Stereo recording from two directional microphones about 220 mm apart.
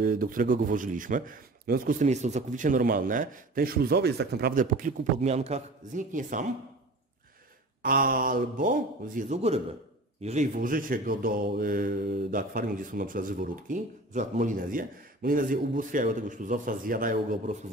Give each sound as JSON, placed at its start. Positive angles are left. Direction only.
{"t": 0.0, "sound": "speech", "side_deg": -40}
{"t": 7.8, "sound": "speech", "side_deg": -40}